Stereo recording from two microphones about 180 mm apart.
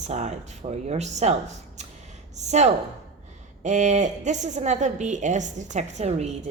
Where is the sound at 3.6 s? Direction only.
40° right (ahead or behind).